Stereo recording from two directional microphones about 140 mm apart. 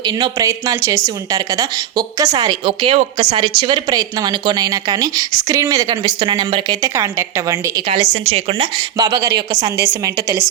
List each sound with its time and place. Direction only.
0.0 s speech: 35° right (ahead or behind)
7.9 s a woman's voice: 40° right (ahead or behind)
9.0 s speech: 25° right (ahead or behind)